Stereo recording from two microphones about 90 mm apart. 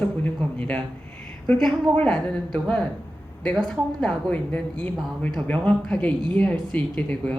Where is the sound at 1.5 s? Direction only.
5° left (ahead or behind).